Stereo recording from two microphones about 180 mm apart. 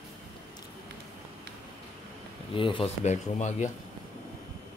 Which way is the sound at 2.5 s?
30° left (ahead or behind).